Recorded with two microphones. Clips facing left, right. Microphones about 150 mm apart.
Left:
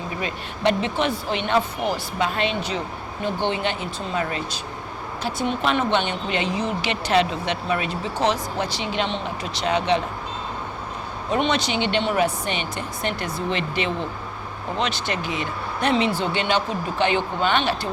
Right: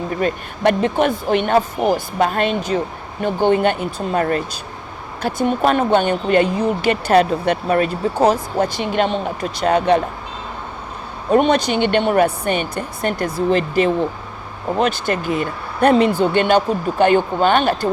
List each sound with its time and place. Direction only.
0.2 s speech: 50° right (ahead or behind)
11.3 s speech: 50° right (ahead or behind)